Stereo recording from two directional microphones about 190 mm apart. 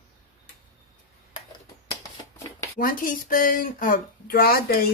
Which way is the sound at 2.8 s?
45° left (ahead or behind).